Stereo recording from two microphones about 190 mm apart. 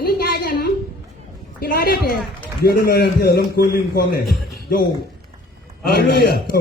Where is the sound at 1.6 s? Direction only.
55° left (ahead or behind).